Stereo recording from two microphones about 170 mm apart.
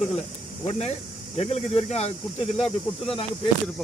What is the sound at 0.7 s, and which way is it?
Speech, 40° left (ahead or behind).